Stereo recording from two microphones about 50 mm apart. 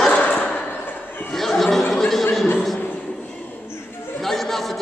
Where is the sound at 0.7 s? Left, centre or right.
Left.